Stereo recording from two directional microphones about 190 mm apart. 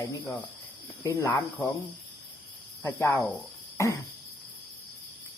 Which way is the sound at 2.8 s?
10° left (ahead or behind).